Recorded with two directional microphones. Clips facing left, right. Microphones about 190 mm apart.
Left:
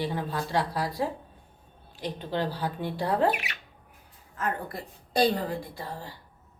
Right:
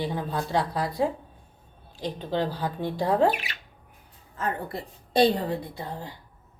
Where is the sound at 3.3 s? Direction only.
30° right (ahead or behind).